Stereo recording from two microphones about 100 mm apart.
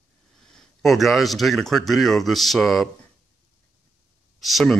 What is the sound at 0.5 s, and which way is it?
Speech, centre (ahead or behind).